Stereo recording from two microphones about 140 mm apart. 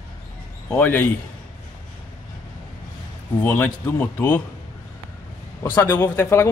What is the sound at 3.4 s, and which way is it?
A man's voice, 10° left (ahead or behind).